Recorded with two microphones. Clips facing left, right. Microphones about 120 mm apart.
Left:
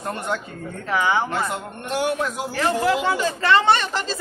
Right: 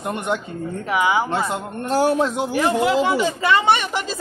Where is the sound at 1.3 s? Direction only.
25° right (ahead or behind).